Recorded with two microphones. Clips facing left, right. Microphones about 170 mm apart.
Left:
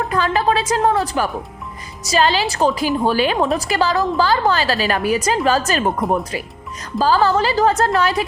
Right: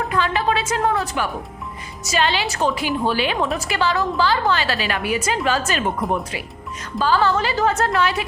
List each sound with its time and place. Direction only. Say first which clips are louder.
0.1 s a woman's voice: left 4 dB; 40° left (ahead or behind)
6.0 s speech: left 3 dB; centre (ahead or behind)
7.0 s a woman's voice: left 3 dB; 40° left (ahead or behind)